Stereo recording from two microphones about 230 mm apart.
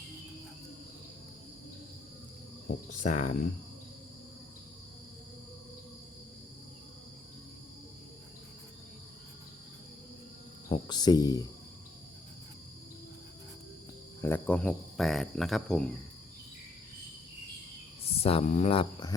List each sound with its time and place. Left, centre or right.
2.6 s cricket: left
10.7 s speech: centre
14.2 s speech: centre
18.0 s speech: left